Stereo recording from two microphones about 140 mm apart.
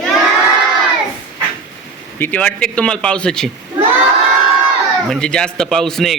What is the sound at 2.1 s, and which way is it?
A man's voice, 15° left (ahead or behind).